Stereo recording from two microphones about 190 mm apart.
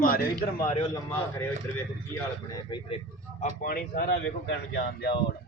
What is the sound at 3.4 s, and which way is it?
A man's voice, 50° left (ahead or behind).